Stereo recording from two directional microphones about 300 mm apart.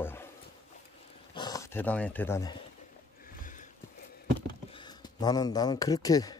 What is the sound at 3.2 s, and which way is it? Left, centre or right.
Sniff, left.